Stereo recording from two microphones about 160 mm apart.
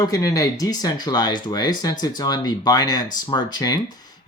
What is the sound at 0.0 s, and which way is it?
Speech, 20° left (ahead or behind).